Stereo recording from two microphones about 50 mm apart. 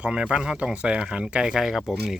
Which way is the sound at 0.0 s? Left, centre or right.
Centre.